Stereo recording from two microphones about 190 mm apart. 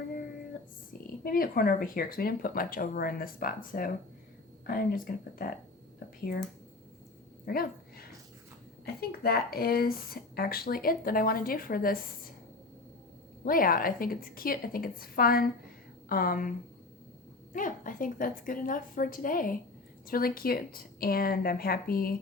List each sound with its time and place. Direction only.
1.2 s speech: 50° left (ahead or behind)
7.4 s dog: 50° left (ahead or behind)
9.0 s speech: 55° left (ahead or behind)
13.4 s speech: 50° left (ahead or behind)
17.5 s speech: 45° left (ahead or behind)